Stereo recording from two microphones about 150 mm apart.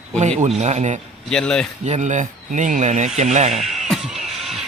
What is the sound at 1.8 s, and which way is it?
Speech, 50° right (ahead or behind).